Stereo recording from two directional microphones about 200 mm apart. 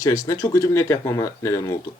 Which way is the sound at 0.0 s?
15° left (ahead or behind).